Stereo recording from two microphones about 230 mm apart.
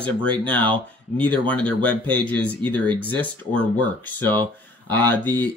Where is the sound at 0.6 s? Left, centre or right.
Right.